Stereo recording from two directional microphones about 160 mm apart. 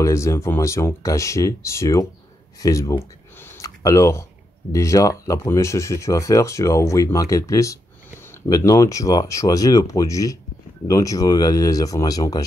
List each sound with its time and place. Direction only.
0.0 s speech: 20° left (ahead or behind)
3.5 s a sound: 20° left (ahead or behind)
4.7 s speech: 20° left (ahead or behind)